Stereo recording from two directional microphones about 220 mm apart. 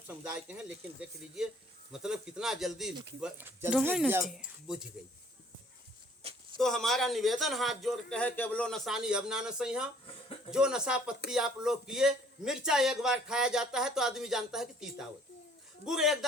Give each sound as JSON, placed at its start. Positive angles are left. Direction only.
{"t": 0.3, "sound": "a man's voice", "side_deg": -5}
{"t": 6.2, "sound": "a sound", "side_deg": -25}
{"t": 6.6, "sound": "a man's voice", "side_deg": 0}